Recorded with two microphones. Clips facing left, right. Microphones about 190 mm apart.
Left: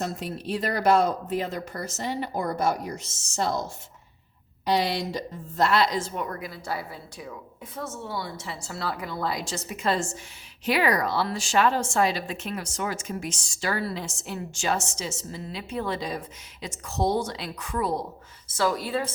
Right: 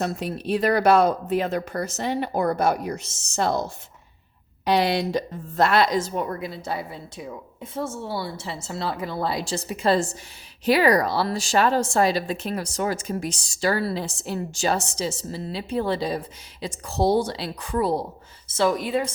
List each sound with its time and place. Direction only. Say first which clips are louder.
0.0 s a woman's voice: right 4 dB; 65° right (ahead or behind); by 19.1 s 15° right (ahead or behind)